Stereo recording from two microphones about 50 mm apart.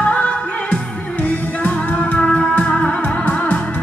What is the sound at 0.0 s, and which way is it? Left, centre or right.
Music, left.